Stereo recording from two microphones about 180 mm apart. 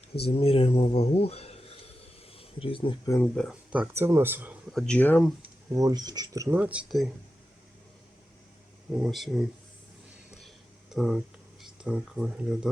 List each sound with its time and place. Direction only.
0.2 s speech: 35° left (ahead or behind)
3.1 s speech: 5° left (ahead or behind)
3.7 s speech: 10° right (ahead or behind)
4.7 s speech: 5° left (ahead or behind)
5.4 s speech: 20° right (ahead or behind); by 7.1 s 5° right (ahead or behind)
9.0 s speech: centre (ahead or behind)
10.9 s speech: centre (ahead or behind)